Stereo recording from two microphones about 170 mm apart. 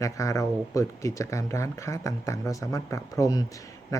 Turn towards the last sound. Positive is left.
turn(degrees=20)  # may be behind; listen again after turning